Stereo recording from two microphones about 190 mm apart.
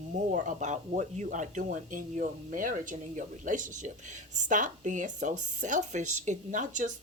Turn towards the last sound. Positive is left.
turn(degrees=-40)  # may be behind; listen again after turning